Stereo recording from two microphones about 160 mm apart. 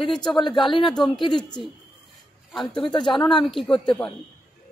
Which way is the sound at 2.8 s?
30° left (ahead or behind).